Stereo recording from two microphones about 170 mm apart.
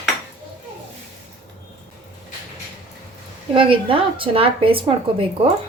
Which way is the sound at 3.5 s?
30° right (ahead or behind).